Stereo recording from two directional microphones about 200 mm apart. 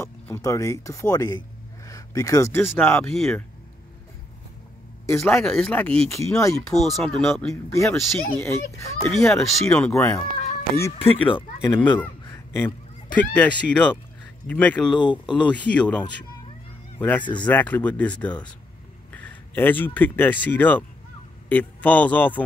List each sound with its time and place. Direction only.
0.0 s speech: 15° left (ahead or behind)
5.0 s a man's voice: 15° left (ahead or behind)
6.7 s speech: centre (ahead or behind)
7.4 s speech: 15° left (ahead or behind)
11.0 s speech: 25° left (ahead or behind)
11.7 s honk: 10° left (ahead or behind)
13.7 s speech: 5° left (ahead or behind)
15.0 s speech: 25° left (ahead or behind)
15.3 s speech: 5° left (ahead or behind)